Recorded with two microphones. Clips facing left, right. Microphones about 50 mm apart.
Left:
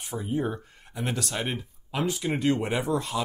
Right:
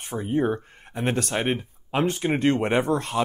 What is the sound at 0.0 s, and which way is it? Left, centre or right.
Speech, right.